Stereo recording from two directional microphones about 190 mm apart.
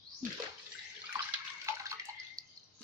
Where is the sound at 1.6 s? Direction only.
15° right (ahead or behind).